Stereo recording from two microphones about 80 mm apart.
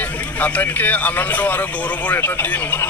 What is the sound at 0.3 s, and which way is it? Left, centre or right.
Speech, left.